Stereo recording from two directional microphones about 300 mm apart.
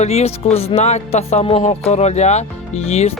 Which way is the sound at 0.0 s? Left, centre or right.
Left.